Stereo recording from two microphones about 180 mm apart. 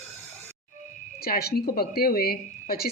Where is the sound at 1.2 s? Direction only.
55° left (ahead or behind).